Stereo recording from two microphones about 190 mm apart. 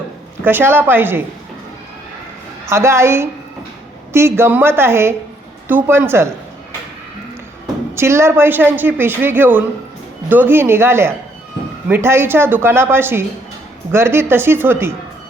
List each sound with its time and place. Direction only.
0.4 s a woman's voice: 10° right (ahead or behind)
2.6 s a woman's voice: 15° right (ahead or behind)
7.9 s a woman's voice: 15° right (ahead or behind)